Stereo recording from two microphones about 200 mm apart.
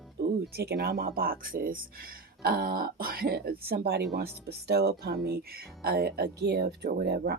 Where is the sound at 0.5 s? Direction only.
55° right (ahead or behind).